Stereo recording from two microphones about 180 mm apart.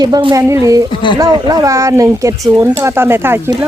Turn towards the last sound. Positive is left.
turn(degrees=-10)  # may be behind; listen again after turning